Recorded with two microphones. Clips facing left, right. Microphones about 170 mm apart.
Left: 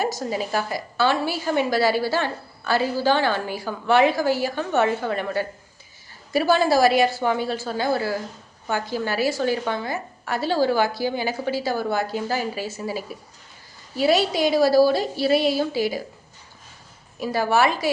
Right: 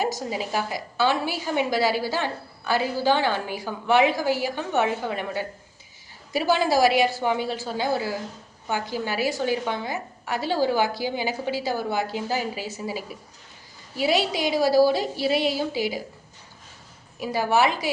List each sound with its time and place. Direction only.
0.0 s a woman's voice: 15° right (ahead or behind)
17.2 s a woman's voice: 15° right (ahead or behind)